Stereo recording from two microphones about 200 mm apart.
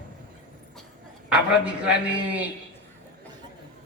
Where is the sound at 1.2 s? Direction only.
5° right (ahead or behind).